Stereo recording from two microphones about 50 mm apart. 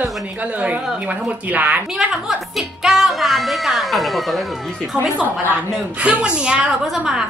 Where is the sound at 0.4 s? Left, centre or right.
Right.